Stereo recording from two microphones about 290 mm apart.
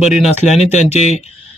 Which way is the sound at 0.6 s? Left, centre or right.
Left.